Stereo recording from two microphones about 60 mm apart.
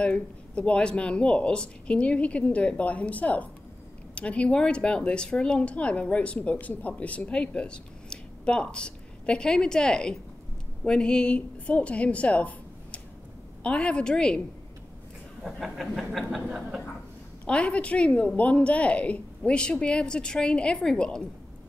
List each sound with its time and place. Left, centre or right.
0.0 s a woman's voice: left
15.4 s a sound: centre
17.5 s speech: centre